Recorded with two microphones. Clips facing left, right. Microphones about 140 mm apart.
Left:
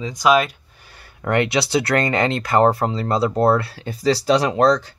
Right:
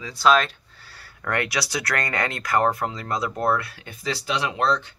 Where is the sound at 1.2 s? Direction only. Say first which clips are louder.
Left 7 dB; 25° left (ahead or behind); by 4.8 s 40° left (ahead or behind).